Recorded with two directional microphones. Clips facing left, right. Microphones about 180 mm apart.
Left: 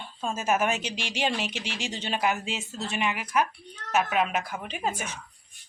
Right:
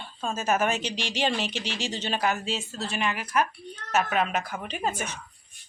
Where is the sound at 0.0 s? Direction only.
Centre (ahead or behind).